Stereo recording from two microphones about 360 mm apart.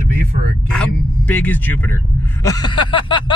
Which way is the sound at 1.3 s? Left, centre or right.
Centre.